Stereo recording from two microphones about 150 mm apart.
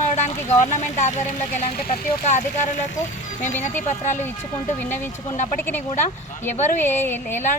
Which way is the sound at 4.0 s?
50° left (ahead or behind).